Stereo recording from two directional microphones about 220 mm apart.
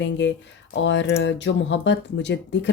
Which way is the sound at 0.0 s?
55° left (ahead or behind).